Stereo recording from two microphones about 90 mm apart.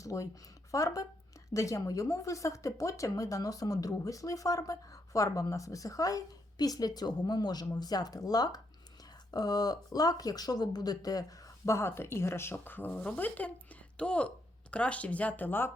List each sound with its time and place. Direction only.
0.0 s speech: 40° left (ahead or behind); by 15.7 s 20° left (ahead or behind)